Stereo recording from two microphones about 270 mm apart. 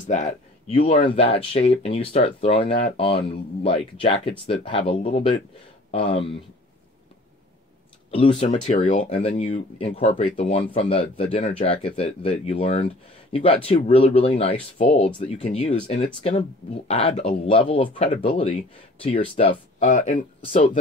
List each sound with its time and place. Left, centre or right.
0.0 s speech: left
8.1 s speech: centre